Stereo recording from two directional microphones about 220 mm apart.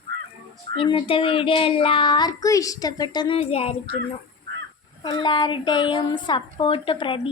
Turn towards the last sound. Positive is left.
turn(degrees=25)  # may be behind; listen again after turning